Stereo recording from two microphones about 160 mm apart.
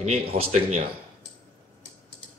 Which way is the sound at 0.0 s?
40° right (ahead or behind).